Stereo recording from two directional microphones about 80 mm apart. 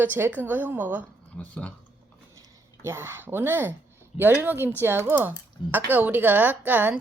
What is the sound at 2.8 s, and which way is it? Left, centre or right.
A woman's voice, right.